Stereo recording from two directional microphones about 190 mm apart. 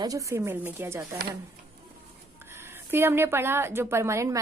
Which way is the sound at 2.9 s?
10° right (ahead or behind).